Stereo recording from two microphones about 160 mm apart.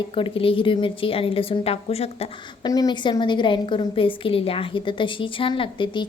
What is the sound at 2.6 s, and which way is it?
A woman's voice, 25° left (ahead or behind).